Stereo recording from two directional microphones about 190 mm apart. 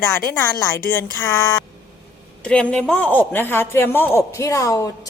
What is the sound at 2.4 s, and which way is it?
A woman's voice, 5° left (ahead or behind).